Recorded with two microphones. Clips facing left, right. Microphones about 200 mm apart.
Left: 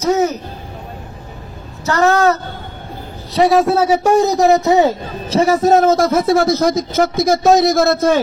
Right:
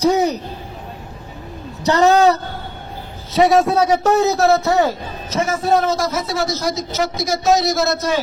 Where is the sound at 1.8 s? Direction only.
15° right (ahead or behind).